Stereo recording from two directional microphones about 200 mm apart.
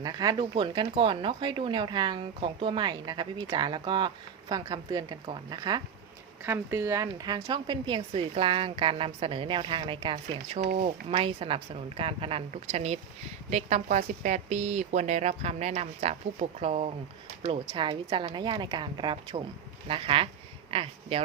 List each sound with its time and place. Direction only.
0.0 s a woman's voice: 20° right (ahead or behind)
10.6 s a woman's voice: 40° right (ahead or behind)